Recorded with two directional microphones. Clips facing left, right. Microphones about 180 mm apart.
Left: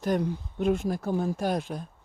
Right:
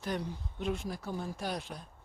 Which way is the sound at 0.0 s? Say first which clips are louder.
Left 9 dB; 50° left (ahead or behind).